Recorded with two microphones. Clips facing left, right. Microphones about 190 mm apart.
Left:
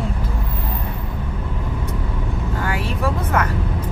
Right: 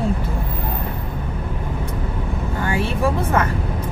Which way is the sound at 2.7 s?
25° right (ahead or behind).